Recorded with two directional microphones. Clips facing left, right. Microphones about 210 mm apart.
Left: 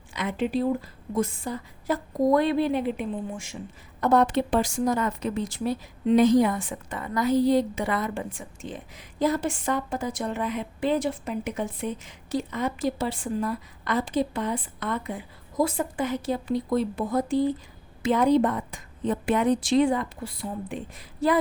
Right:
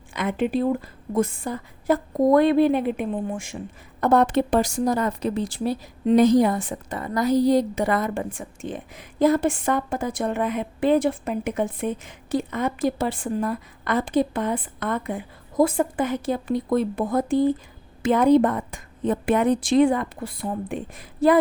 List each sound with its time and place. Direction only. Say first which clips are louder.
0.1 s a woman's voice: right 3 dB; 55° right (ahead or behind)